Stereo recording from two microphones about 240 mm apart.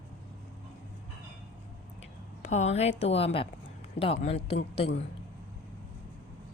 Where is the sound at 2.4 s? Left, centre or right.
Left.